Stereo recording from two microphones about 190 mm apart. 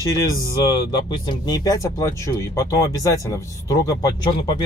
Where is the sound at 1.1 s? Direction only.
20° left (ahead or behind).